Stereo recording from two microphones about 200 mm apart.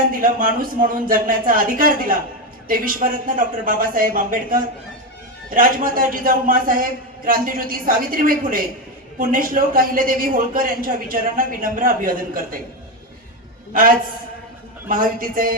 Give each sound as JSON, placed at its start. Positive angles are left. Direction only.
{"t": 0.1, "sound": "a man's voice", "side_deg": -45}
{"t": 14.8, "sound": "a man's voice", "side_deg": -45}